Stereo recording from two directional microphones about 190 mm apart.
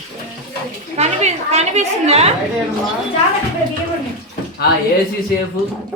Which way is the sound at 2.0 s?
30° right (ahead or behind).